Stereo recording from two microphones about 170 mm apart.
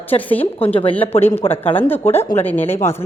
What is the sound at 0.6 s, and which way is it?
Speech, 35° left (ahead or behind).